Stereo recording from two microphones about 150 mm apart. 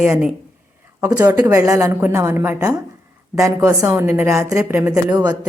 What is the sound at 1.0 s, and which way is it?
A woman's voice, 20° right (ahead or behind).